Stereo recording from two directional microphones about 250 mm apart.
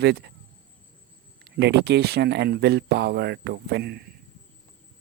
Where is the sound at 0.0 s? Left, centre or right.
Right.